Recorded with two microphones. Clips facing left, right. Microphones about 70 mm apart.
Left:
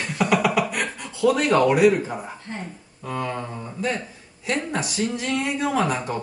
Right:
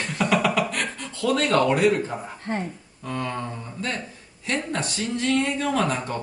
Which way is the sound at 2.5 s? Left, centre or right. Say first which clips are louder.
Right 9 dB; right.